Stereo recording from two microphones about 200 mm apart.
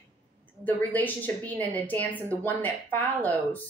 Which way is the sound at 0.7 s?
10° left (ahead or behind).